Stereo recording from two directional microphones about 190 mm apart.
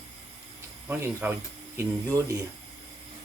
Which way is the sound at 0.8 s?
10° right (ahead or behind).